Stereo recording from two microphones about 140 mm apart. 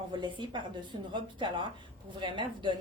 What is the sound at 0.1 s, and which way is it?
A woman's voice, 35° right (ahead or behind).